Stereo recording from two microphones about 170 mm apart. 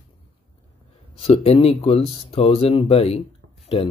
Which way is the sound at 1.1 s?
35° left (ahead or behind).